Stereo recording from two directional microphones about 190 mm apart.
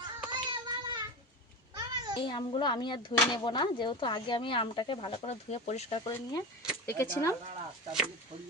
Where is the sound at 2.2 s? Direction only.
25° left (ahead or behind).